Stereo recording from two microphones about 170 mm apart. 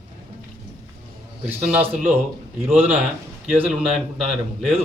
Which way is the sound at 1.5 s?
10° right (ahead or behind).